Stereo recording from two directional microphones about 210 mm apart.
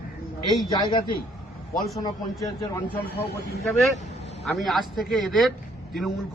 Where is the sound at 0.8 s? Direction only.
20° left (ahead or behind).